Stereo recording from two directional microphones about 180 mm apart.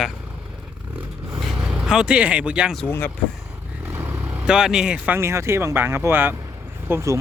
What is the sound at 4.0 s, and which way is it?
Speech, 10° right (ahead or behind).